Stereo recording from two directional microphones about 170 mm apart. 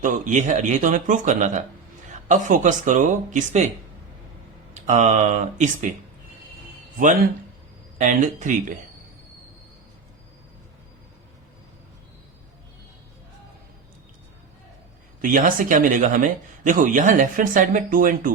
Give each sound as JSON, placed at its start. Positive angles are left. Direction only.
{"t": 0.0, "sound": "speech", "side_deg": -50}
{"t": 4.7, "sound": "speech", "side_deg": -45}
{"t": 7.9, "sound": "speech", "side_deg": -45}
{"t": 15.2, "sound": "speech", "side_deg": -55}